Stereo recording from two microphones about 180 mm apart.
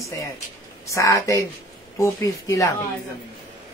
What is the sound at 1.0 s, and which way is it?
A woman's voice, 15° left (ahead or behind).